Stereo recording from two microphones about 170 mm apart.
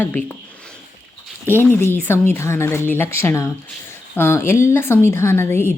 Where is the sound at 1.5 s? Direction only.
15° left (ahead or behind).